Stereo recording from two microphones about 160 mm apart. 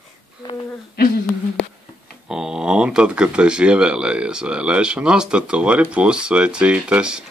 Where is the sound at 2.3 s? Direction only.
5° right (ahead or behind).